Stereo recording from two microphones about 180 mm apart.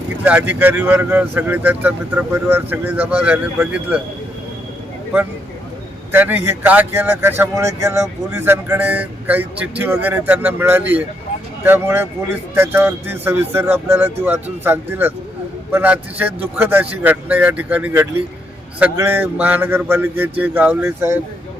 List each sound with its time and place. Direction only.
0.3 s speech: 10° right (ahead or behind)
6.1 s speech: 10° right (ahead or behind)